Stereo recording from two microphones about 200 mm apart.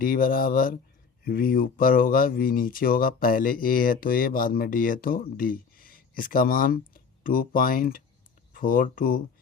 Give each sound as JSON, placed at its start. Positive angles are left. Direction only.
{"t": 0.0, "sound": "speech", "side_deg": 45}